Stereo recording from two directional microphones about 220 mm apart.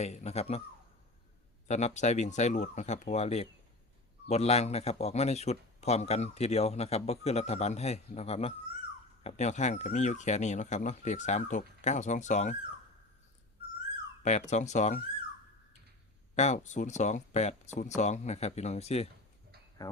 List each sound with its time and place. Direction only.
0.0 s a man's voice: 30° left (ahead or behind)
1.6 s a man's voice: 30° left (ahead or behind)
14.2 s speech: 30° left (ahead or behind)
16.3 s speech: 30° left (ahead or behind)
19.8 s speech: 20° left (ahead or behind)